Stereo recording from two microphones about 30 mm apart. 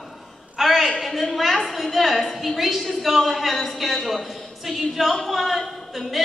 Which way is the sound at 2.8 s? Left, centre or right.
Centre.